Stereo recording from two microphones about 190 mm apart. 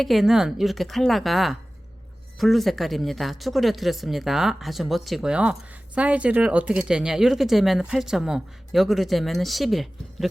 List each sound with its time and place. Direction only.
0.0 s speech: centre (ahead or behind)